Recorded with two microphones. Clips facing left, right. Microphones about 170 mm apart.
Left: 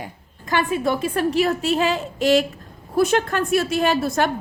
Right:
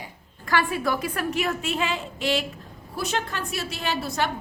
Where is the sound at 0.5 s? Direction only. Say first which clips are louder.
Left 3 dB; 20° left (ahead or behind).